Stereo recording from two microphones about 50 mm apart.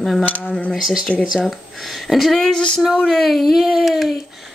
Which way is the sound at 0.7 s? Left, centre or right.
Centre.